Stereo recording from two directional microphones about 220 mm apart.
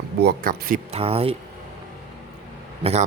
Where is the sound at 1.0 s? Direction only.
25° right (ahead or behind).